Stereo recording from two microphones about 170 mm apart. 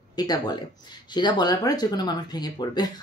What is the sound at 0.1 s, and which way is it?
Speech, 25° left (ahead or behind).